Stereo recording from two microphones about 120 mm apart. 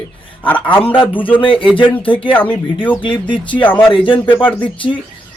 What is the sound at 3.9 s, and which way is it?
Speech, 45° left (ahead or behind).